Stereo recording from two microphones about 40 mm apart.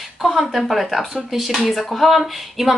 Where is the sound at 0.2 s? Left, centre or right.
Centre.